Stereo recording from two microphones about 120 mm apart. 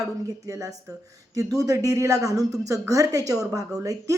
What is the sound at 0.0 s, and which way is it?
A woman's voice, 30° right (ahead or behind).